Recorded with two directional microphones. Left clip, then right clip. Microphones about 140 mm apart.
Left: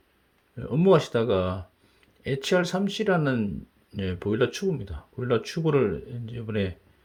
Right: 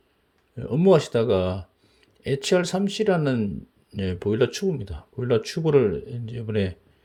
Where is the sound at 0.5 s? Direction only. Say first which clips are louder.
Right 2 dB; 15° right (ahead or behind).